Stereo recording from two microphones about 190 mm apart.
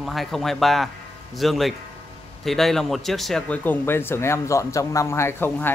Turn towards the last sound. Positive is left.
turn(degrees=10)  # may be behind; listen again after turning